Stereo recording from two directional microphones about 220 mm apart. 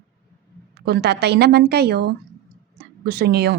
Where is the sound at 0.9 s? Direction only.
50° right (ahead or behind).